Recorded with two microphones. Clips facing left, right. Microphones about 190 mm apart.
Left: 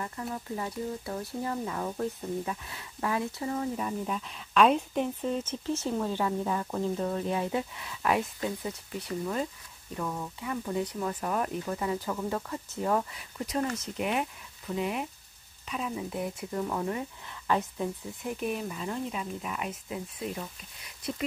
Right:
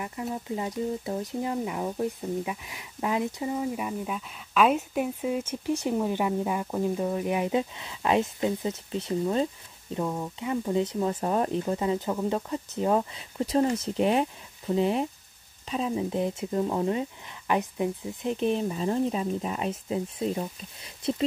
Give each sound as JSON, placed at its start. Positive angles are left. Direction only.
{"t": 0.0, "sound": "speech", "side_deg": -15}